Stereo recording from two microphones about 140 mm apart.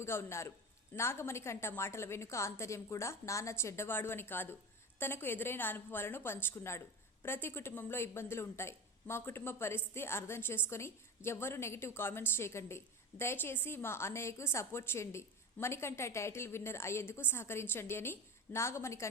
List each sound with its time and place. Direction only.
0.0 s a woman's voice: 20° left (ahead or behind)